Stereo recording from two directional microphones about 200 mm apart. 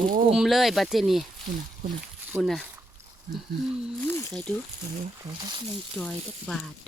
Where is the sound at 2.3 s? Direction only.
Centre (ahead or behind).